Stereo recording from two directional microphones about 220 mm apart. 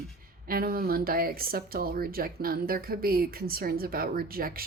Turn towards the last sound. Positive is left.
turn(degrees=-40)  # may be behind; listen again after turning